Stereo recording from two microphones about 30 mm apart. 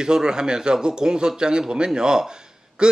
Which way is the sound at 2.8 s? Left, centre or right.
Right.